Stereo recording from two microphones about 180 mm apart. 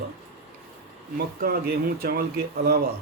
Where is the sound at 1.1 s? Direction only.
60° right (ahead or behind).